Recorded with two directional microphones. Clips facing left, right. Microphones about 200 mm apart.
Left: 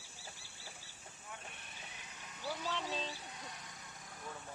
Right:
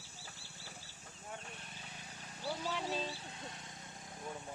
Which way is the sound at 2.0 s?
35° right (ahead or behind).